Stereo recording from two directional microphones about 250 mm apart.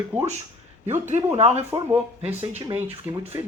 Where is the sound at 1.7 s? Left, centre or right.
Centre.